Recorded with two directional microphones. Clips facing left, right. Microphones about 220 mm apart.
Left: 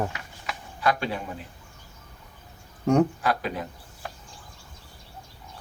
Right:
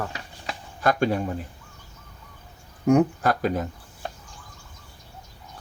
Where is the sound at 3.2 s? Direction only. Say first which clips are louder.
Right 4 dB; 45° right (ahead or behind).